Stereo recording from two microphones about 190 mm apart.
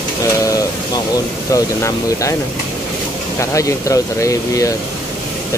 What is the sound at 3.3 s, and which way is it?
Speech, 15° left (ahead or behind).